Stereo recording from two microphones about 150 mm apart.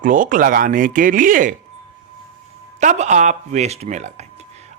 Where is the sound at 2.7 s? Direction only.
50° right (ahead or behind).